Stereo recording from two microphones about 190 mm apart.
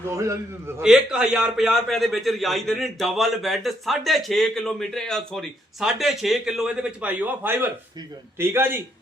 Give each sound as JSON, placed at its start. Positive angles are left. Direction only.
{"t": 0.1, "sound": "a man's voice", "side_deg": -15}
{"t": 0.8, "sound": "a man's voice", "side_deg": -5}